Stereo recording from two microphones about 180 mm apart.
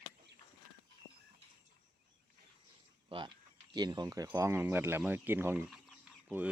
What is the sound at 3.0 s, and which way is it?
Speech, 30° right (ahead or behind).